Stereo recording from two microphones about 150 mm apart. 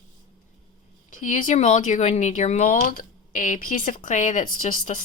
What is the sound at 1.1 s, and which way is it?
Speech, 60° left (ahead or behind).